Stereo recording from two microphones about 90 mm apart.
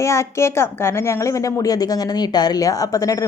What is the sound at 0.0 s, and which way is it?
A woman's voice, 30° left (ahead or behind).